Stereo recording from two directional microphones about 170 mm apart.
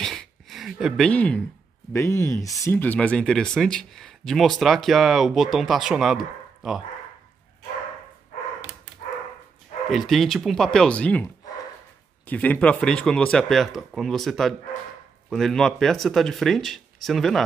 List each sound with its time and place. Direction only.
0.0 s a sound: centre (ahead or behind)
1.9 s speech: 15° left (ahead or behind); by 6.8 s 5° right (ahead or behind)
9.8 s speech: centre (ahead or behind)
12.3 s speech: 10° left (ahead or behind)